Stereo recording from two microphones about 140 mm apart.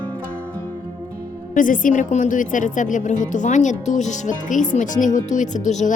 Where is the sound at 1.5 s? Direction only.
70° left (ahead or behind).